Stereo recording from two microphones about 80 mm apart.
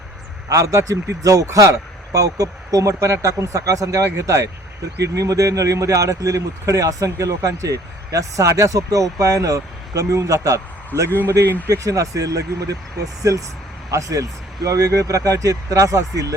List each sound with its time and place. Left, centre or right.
0.4 s speech: right